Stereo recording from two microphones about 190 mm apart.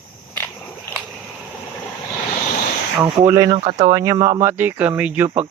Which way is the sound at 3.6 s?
35° right (ahead or behind).